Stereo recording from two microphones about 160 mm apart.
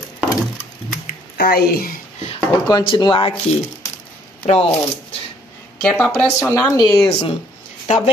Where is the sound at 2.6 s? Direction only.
25° left (ahead or behind).